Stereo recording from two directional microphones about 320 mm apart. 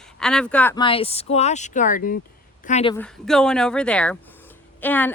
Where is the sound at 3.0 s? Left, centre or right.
Centre.